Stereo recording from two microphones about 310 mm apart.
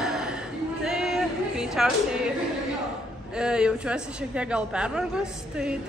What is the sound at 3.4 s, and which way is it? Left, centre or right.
A woman's voice, centre.